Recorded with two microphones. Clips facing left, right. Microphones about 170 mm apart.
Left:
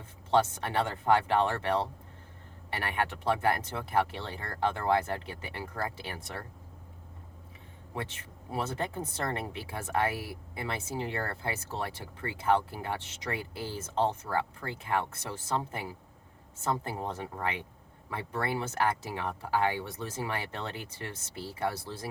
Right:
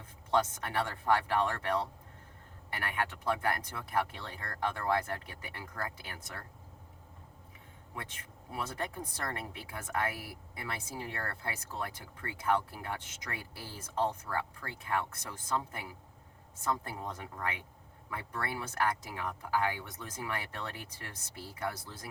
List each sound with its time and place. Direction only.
0.3 s speech: 25° left (ahead or behind)
8.5 s speech: 25° left (ahead or behind)